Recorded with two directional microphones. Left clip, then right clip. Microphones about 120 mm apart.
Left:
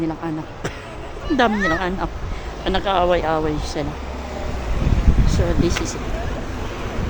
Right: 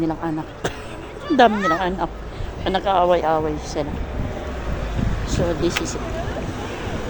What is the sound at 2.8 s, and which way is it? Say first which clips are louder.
Speech: right 1 dB; 35° left (ahead or behind).